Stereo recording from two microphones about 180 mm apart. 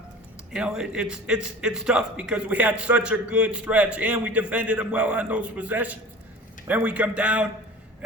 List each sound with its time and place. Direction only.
0.5 s a man's voice: 5° right (ahead or behind)